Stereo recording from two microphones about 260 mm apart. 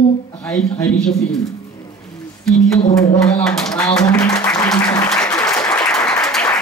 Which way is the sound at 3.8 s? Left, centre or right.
Centre.